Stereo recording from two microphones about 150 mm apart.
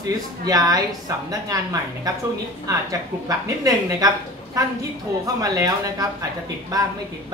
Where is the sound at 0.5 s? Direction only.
25° right (ahead or behind).